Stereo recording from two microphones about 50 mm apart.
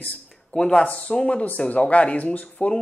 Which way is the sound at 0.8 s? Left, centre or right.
Left.